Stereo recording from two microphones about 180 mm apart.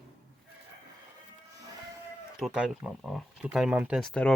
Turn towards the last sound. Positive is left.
turn(degrees=5)  # may be behind; listen again after turning